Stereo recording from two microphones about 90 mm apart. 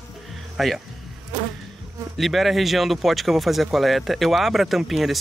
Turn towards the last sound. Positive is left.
turn(degrees=0)  # may be behind; listen again after turning